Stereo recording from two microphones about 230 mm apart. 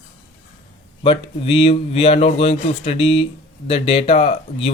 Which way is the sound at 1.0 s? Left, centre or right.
Left.